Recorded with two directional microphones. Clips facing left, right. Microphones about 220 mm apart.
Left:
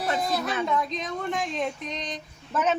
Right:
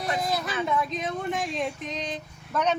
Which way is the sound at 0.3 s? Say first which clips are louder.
Left 1 dB; centre (ahead or behind).